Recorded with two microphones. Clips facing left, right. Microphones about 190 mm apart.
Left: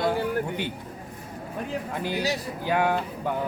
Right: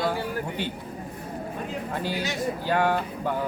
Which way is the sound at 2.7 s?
10° left (ahead or behind).